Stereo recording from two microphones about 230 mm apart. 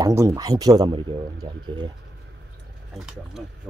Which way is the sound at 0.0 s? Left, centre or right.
Centre.